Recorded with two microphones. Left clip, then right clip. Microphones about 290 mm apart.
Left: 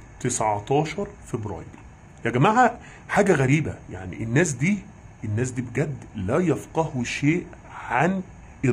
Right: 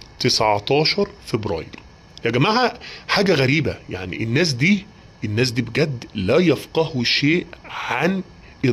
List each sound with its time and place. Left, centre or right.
0.2 s speech: centre